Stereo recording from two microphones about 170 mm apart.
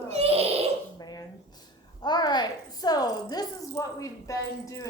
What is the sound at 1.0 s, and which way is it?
A woman's voice, 25° left (ahead or behind).